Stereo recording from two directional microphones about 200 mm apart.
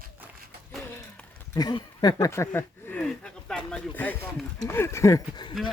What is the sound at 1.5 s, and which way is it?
Speech, 20° left (ahead or behind).